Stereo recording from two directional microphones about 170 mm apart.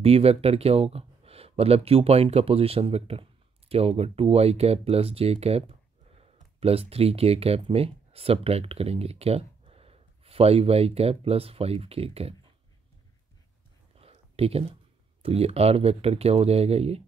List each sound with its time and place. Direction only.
0.0 s speech: 35° right (ahead or behind)
13.9 s a sound: 35° right (ahead or behind)
15.2 s speech: 35° right (ahead or behind)